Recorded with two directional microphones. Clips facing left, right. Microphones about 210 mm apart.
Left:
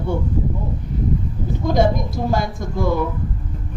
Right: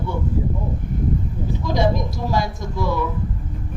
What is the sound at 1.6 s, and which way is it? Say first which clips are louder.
A woman's voice: left 3 dB; 50° left (ahead or behind).